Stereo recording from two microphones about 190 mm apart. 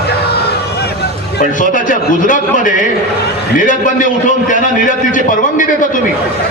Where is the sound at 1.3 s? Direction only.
45° left (ahead or behind).